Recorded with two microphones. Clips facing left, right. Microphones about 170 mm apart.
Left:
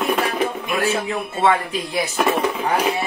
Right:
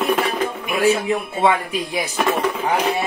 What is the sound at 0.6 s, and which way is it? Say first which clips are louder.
Speech: right 3 dB; 15° right (ahead or behind).